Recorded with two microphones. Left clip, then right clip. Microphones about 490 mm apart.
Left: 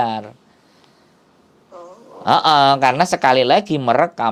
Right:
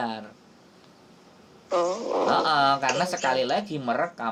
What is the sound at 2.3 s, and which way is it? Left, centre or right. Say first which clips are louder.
Speech: left 10 dB; left.